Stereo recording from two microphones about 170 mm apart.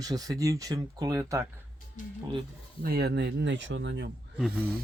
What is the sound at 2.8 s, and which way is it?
Speech, 65° right (ahead or behind).